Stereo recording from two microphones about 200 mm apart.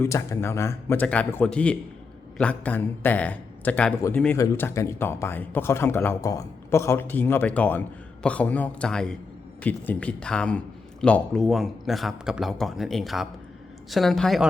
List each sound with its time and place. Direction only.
0.0 s a man's voice: 15° left (ahead or behind)